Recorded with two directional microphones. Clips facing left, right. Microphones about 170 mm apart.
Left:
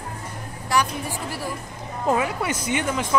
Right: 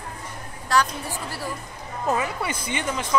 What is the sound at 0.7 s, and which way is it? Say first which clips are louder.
Speech: even; 15° left (ahead or behind).